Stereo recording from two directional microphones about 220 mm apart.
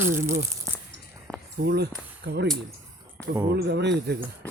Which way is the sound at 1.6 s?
50° right (ahead or behind).